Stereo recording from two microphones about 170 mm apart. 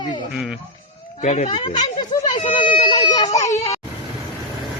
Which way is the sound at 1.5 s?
30° left (ahead or behind).